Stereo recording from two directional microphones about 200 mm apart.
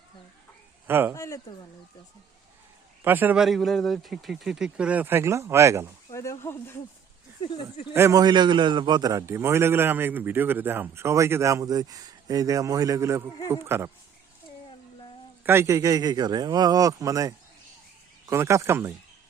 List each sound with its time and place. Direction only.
0.9 s speech: 10° right (ahead or behind)
1.1 s speech: 15° left (ahead or behind)
3.0 s speech: 10° right (ahead or behind)
6.1 s speech: 15° left (ahead or behind)
7.4 s speech: 25° left (ahead or behind)
7.9 s a man's voice: 15° right (ahead or behind)
15.4 s a man's voice: 15° right (ahead or behind)